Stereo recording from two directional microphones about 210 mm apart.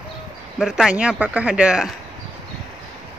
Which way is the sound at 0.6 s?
Centre (ahead or behind).